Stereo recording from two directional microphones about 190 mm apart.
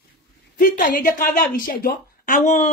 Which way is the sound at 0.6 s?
45° left (ahead or behind).